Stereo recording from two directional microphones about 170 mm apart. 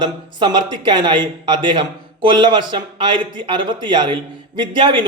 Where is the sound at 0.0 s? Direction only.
25° right (ahead or behind).